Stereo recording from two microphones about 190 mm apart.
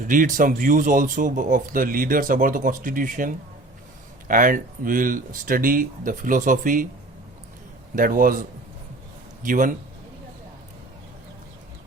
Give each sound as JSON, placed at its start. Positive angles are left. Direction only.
{"t": 0.0, "sound": "speech", "side_deg": -45}
{"t": 7.9, "sound": "speech", "side_deg": -45}